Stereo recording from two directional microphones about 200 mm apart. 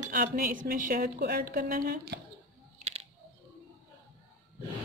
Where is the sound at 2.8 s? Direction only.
30° right (ahead or behind).